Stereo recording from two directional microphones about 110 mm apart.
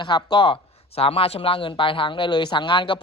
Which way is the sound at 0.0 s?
45° left (ahead or behind).